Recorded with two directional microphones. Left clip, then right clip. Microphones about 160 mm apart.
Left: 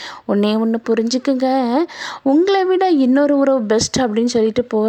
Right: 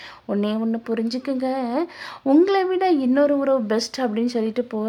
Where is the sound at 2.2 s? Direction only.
10° left (ahead or behind).